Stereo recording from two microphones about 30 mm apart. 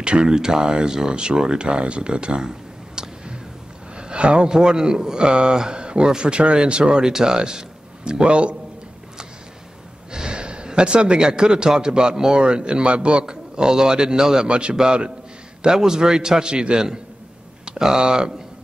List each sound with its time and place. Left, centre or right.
0.0 s speech: right
1.7 s a man's voice: right
3.0 s a sound: right
3.9 s a man's voice: right
10.1 s a man's voice: right
13.2 s speech: right
14.5 s a man's voice: right
15.6 s speech: right